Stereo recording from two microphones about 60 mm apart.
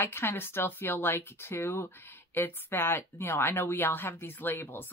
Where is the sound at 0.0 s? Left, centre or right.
Left.